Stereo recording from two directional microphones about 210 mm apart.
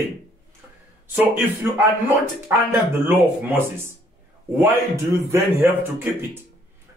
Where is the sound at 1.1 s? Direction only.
5° right (ahead or behind).